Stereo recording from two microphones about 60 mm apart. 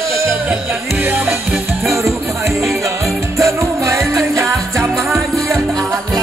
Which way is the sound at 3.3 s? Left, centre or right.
Right.